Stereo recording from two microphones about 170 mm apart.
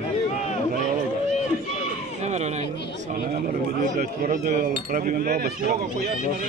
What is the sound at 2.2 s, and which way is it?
Speech, 40° right (ahead or behind).